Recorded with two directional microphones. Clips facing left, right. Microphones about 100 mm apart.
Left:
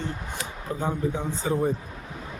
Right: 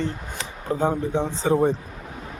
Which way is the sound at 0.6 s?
35° right (ahead or behind).